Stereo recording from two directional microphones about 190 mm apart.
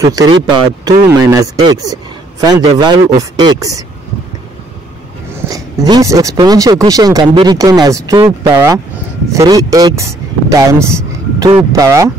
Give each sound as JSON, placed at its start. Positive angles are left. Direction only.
{"t": 0.0, "sound": "speech", "side_deg": -20}
{"t": 5.3, "sound": "speech", "side_deg": -20}